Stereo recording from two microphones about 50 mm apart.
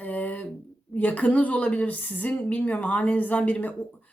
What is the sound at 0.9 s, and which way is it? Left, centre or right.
A woman's voice, left.